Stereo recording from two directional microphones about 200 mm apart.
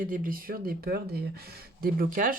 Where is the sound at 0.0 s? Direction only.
45° right (ahead or behind).